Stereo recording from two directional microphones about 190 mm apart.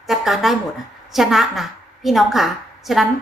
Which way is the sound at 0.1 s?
Centre (ahead or behind).